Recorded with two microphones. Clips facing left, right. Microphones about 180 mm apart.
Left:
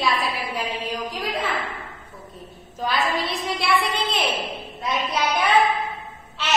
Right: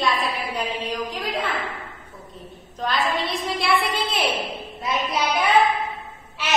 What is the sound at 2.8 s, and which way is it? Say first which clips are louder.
A woman's voice: even; centre (ahead or behind).